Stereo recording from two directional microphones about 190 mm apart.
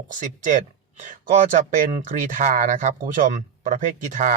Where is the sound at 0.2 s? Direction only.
40° right (ahead or behind).